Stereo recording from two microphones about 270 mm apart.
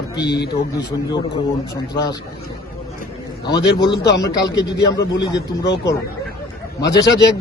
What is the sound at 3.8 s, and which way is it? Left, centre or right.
A man's voice, centre.